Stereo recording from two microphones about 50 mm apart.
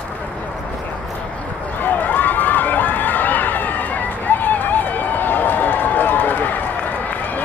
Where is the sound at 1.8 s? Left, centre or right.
Left.